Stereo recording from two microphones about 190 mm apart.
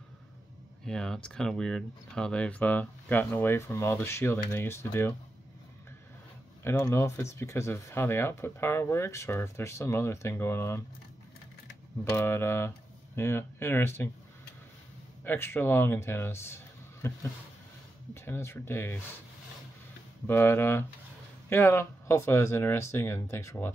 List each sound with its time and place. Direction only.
0.8 s speech: 5° left (ahead or behind)
6.6 s speech: 15° left (ahead or behind)
12.0 s speech: 15° left (ahead or behind)
15.2 s a man's voice: 10° left (ahead or behind)
20.2 s speech: 10° left (ahead or behind)